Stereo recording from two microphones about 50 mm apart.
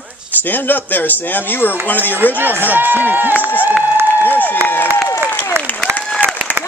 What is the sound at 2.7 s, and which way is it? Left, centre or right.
Speech, right.